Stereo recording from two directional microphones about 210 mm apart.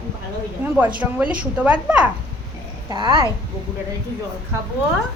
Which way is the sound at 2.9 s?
20° right (ahead or behind).